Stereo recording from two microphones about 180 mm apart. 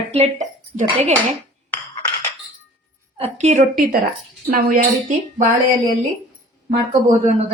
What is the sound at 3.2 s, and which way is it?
Speech, 40° right (ahead or behind).